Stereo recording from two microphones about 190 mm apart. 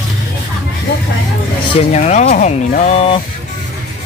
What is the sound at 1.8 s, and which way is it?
Speech, 35° left (ahead or behind).